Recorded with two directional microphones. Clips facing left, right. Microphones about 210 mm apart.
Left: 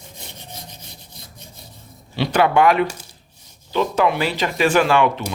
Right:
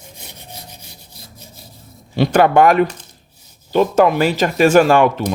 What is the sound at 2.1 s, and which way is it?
Speech, 45° right (ahead or behind).